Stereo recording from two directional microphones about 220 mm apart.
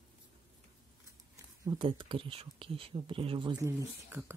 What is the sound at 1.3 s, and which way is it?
Speech, 15° right (ahead or behind).